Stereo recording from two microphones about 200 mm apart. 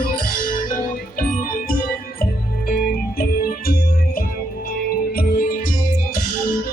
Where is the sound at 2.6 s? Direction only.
50° left (ahead or behind).